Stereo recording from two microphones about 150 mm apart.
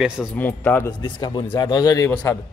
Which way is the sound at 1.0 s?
30° left (ahead or behind).